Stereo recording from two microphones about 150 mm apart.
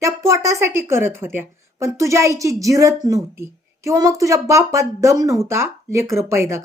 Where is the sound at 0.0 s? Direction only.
20° right (ahead or behind).